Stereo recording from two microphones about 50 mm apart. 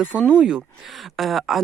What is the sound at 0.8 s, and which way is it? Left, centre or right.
Speech, centre.